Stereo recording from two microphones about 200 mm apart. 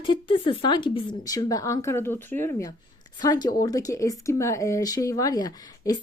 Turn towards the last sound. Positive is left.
turn(degrees=20)  # may be behind; listen again after turning